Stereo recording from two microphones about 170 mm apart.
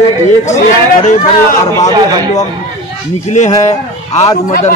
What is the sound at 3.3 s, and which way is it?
Speech, 45° left (ahead or behind).